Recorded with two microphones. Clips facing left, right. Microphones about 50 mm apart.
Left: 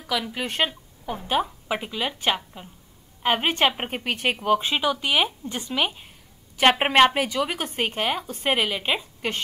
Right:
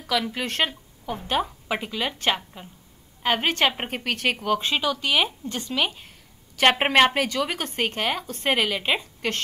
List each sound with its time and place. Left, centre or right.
0.3 s a woman's voice: centre
3.3 s speech: centre
6.6 s a woman's voice: centre
9.2 s speech: centre